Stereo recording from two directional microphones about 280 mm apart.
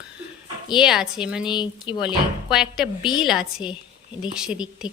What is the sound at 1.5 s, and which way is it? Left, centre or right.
Speech, centre.